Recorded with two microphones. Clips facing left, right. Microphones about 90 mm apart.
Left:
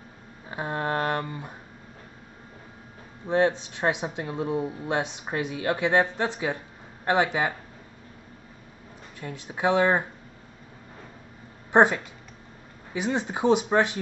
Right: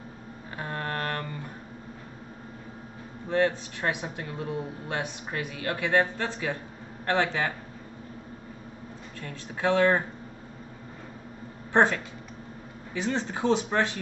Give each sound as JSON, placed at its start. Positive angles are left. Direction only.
{"t": 0.5, "sound": "music", "side_deg": 20}
{"t": 3.3, "sound": "speech", "side_deg": 20}
{"t": 9.2, "sound": "speech", "side_deg": 15}
{"t": 11.7, "sound": "speech", "side_deg": 15}